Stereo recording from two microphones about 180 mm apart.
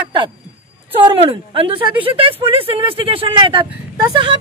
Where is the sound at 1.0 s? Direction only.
30° right (ahead or behind).